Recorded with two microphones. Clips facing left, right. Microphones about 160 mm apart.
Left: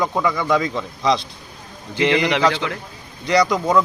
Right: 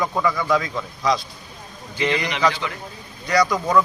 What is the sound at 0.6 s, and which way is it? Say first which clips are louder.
Speech: left 4 dB; 20° left (ahead or behind).